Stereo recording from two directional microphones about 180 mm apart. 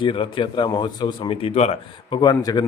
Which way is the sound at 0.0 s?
30° left (ahead or behind).